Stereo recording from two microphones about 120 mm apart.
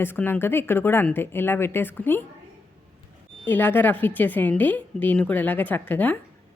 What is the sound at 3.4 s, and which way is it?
A woman's voice, 15° left (ahead or behind).